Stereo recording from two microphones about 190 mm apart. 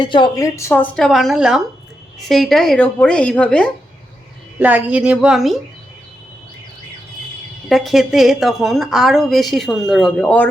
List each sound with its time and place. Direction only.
0.0 s a woman's voice: 25° left (ahead or behind); by 3.7 s 5° left (ahead or behind)
4.6 s a woman's voice: 5° right (ahead or behind)
7.7 s a woman's voice: centre (ahead or behind)